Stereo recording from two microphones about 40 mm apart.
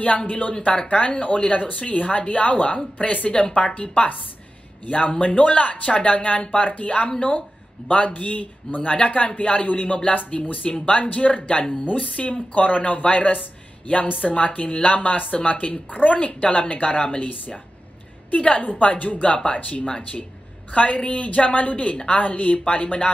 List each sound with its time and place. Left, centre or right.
0.3 s speech: left
18.3 s speech: left
19.3 s speech: left